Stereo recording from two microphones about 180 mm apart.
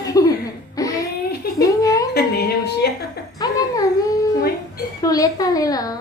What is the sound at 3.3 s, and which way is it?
Music, 20° left (ahead or behind).